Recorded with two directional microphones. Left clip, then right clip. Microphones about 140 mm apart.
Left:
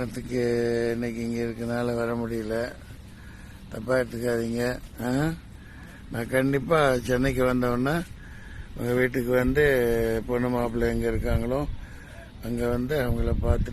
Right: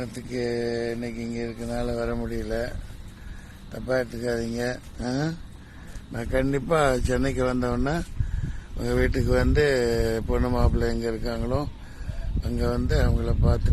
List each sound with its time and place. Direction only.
0.0 s speech: 40° left (ahead or behind)
2.0 s a man's voice: 25° left (ahead or behind); by 10.6 s 5° left (ahead or behind)
10.6 s a man's voice: 25° left (ahead or behind)